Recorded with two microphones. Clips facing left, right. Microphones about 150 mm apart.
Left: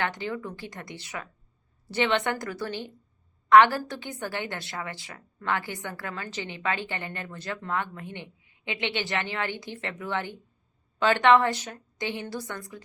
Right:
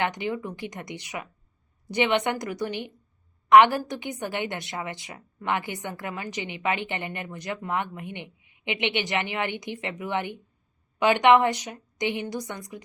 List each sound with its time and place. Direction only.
0.0 s a woman's voice: 15° right (ahead or behind)